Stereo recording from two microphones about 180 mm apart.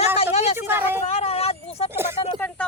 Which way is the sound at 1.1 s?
35° left (ahead or behind).